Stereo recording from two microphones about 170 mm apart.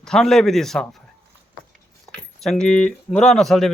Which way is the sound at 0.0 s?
5° left (ahead or behind).